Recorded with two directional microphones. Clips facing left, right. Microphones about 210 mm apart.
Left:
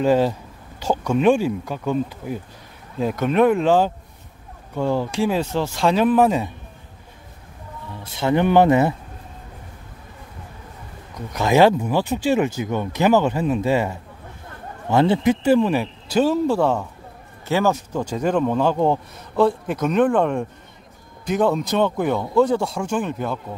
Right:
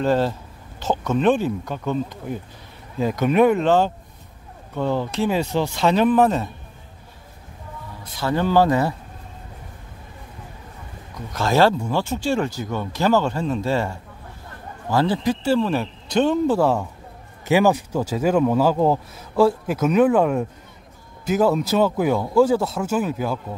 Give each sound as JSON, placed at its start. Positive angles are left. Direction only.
{"t": 0.0, "sound": "speech", "side_deg": 10}
{"t": 8.0, "sound": "speech", "side_deg": 20}
{"t": 11.3, "sound": "speech", "side_deg": 15}
{"t": 17.5, "sound": "speech", "side_deg": -15}